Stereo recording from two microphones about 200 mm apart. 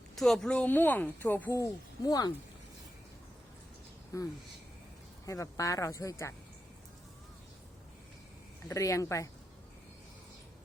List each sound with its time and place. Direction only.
0.2 s speech: centre (ahead or behind); by 2.3 s 20° left (ahead or behind)
4.1 s speech: 15° left (ahead or behind)
8.6 s speech: 15° left (ahead or behind)